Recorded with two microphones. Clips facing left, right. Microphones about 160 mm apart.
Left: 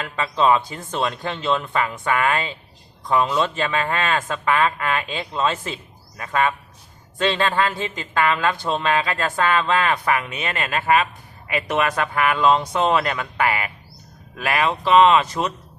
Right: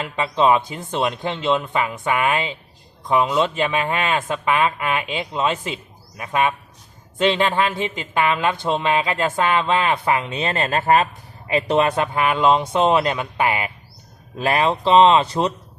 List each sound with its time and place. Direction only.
0.0 s speech: 20° right (ahead or behind)